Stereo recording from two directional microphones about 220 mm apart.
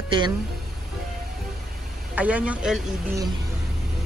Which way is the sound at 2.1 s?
5° right (ahead or behind).